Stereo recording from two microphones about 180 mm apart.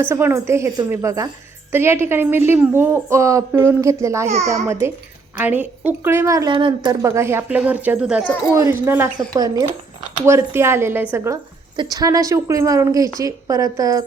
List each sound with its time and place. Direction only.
0.0 s a woman's voice: 15° right (ahead or behind)